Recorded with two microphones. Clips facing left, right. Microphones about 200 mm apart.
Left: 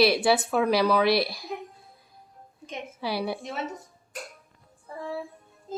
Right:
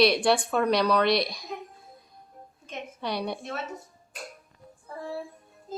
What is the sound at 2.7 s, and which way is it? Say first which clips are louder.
Speech: left 1 dB; 5° left (ahead or behind).